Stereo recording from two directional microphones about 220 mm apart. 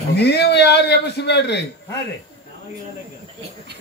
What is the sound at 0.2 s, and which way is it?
Speech, 50° left (ahead or behind).